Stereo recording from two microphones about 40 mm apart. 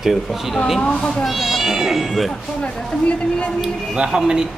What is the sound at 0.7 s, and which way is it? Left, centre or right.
Speech, left.